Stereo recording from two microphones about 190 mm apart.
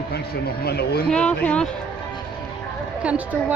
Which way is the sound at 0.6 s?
55° left (ahead or behind).